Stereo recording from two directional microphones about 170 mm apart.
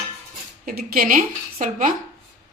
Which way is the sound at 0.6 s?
55° right (ahead or behind).